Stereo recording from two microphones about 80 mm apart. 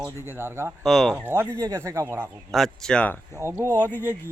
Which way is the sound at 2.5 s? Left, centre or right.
Centre.